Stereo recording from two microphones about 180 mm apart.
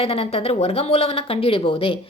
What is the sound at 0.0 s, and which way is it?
A woman's voice, 35° left (ahead or behind).